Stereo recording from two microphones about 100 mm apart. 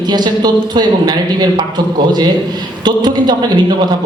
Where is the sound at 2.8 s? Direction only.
45° right (ahead or behind).